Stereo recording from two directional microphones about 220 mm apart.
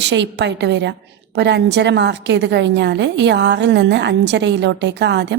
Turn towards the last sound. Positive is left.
turn(degrees=-50)  # may be behind; listen again after turning